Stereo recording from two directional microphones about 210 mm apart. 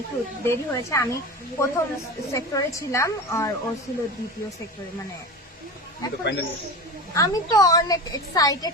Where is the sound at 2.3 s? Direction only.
15° left (ahead or behind).